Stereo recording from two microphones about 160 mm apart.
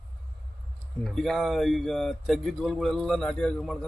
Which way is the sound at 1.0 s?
Centre (ahead or behind).